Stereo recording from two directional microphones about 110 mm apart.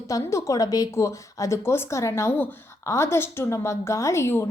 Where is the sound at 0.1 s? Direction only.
30° left (ahead or behind).